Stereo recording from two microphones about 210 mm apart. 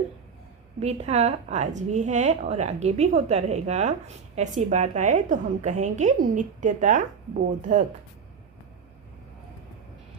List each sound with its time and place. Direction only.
0.8 s a woman's voice: 30° right (ahead or behind)